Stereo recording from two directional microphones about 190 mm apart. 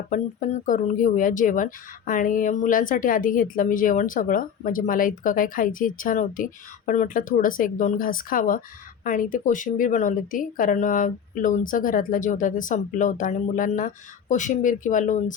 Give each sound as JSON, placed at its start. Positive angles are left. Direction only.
{"t": 0.1, "sound": "speech", "side_deg": 45}